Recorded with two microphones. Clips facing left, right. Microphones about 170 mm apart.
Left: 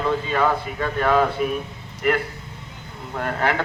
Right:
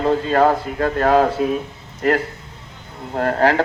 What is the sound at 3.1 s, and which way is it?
Speech, 40° right (ahead or behind).